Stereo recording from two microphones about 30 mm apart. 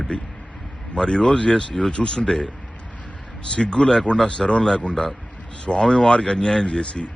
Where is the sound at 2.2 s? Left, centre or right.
Centre.